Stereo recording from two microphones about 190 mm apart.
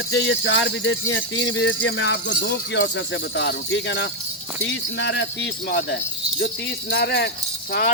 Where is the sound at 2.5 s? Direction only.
60° left (ahead or behind).